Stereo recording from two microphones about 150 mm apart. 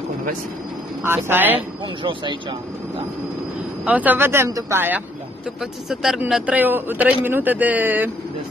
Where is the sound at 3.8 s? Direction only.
10° right (ahead or behind).